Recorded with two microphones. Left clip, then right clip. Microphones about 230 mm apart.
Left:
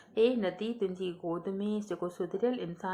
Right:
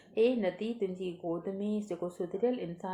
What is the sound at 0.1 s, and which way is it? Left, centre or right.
Speech, left.